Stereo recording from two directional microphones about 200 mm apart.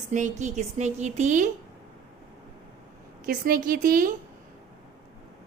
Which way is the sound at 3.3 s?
45° right (ahead or behind).